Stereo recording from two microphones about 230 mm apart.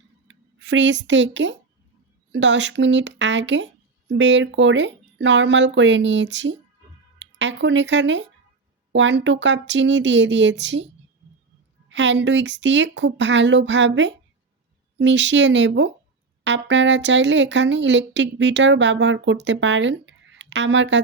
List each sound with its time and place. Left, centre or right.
0.3 s speech: right